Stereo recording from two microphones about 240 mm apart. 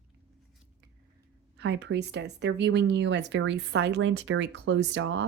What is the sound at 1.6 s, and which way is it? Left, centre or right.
Speech, right.